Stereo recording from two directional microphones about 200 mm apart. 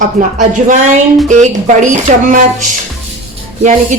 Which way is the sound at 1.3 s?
40° right (ahead or behind).